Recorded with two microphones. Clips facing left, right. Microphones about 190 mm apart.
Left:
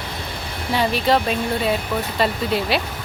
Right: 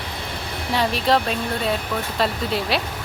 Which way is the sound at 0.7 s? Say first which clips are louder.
Left 1 dB; centre (ahead or behind).